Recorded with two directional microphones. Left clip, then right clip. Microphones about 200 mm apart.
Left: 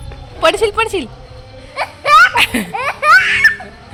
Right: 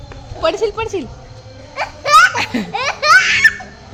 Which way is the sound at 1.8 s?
30° left (ahead or behind).